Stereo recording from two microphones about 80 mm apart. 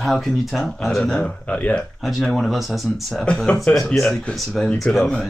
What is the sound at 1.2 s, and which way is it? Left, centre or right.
Speech, centre.